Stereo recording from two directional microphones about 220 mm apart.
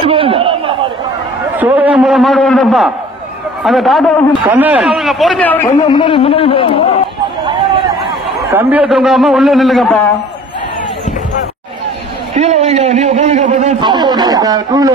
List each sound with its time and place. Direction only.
0.0 s chatter: 25° right (ahead or behind)
1.6 s a sound: 5° right (ahead or behind)
3.6 s a man's voice: centre (ahead or behind); by 7.0 s 25° left (ahead or behind)
7.4 s a sound: 20° right (ahead or behind)
8.5 s a man's voice: 10° right (ahead or behind)
12.4 s a man's voice: 30° right (ahead or behind)
13.8 s a man's voice: 20° right (ahead or behind)